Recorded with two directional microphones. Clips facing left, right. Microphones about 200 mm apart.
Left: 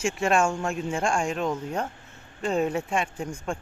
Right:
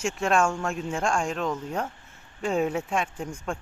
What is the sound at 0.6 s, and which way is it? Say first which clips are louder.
Speech: left 1 dB; centre (ahead or behind).